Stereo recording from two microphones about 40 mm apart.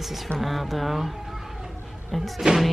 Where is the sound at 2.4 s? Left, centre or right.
Right.